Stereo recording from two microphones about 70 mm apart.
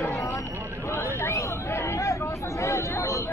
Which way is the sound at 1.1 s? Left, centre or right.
Left.